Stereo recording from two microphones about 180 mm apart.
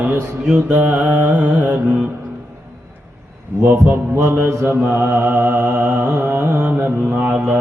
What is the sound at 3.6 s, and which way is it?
Mantra, 10° right (ahead or behind).